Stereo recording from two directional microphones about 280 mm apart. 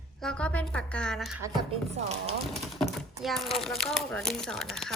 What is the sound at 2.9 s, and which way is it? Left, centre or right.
Speech, centre.